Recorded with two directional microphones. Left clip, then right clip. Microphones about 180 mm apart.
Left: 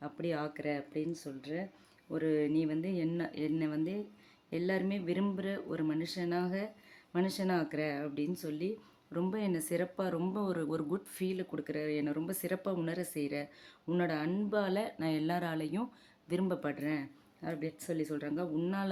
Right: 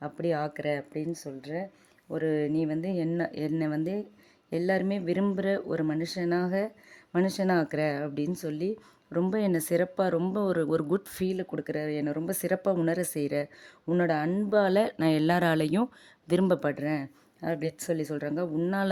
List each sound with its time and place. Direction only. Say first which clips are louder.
0.0 s speech: right 7 dB; 45° right (ahead or behind)